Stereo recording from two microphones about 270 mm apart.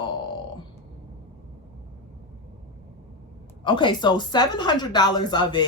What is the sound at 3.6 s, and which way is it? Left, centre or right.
A woman's voice, centre.